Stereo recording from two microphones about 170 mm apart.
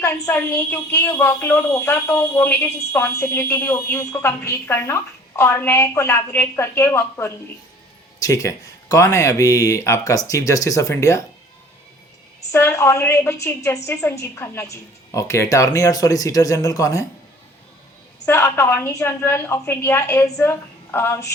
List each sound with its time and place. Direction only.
0.0 s speech: 15° left (ahead or behind)
12.5 s speech: 15° left (ahead or behind)
18.3 s speech: 15° left (ahead or behind)